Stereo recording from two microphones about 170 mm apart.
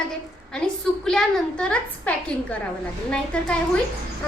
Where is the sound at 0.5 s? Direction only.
5° left (ahead or behind).